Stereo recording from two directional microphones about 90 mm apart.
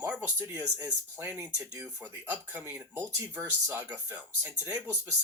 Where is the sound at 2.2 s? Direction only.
20° right (ahead or behind).